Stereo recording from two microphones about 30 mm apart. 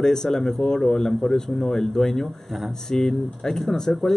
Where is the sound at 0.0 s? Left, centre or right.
Centre.